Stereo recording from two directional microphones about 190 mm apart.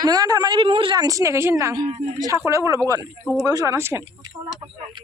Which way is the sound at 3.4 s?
20° right (ahead or behind).